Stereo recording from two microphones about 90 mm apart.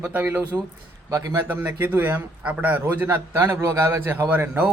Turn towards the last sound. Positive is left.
turn(degrees=-20)  # may be behind; listen again after turning